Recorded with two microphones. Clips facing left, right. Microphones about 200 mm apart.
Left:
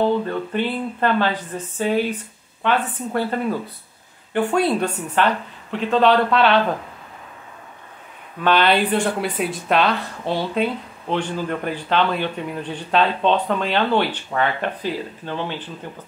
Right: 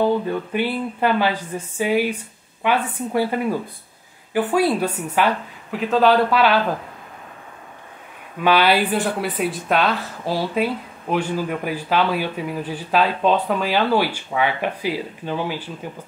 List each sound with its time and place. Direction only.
0.0 s a sound: 10° right (ahead or behind)
4.3 s speech: 5° right (ahead or behind)
8.4 s speech: 10° right (ahead or behind)